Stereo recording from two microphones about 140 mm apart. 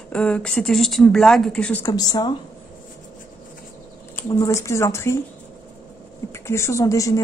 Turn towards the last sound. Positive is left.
turn(degrees=25)  # may be behind; listen again after turning